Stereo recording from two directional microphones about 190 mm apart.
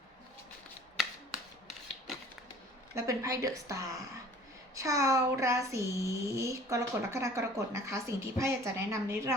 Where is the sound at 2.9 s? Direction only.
15° right (ahead or behind).